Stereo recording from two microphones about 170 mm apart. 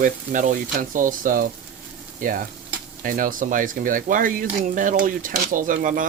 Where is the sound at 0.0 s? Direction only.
50° right (ahead or behind).